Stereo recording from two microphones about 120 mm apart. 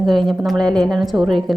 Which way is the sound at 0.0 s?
Centre (ahead or behind).